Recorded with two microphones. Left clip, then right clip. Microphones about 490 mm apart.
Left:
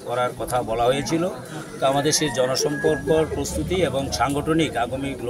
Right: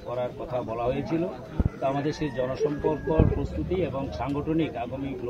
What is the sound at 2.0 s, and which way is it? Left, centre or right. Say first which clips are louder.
Speech: left 8 dB; right.